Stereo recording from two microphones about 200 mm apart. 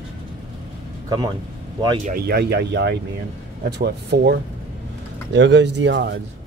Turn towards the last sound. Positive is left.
turn(degrees=-60)  # may be behind; listen again after turning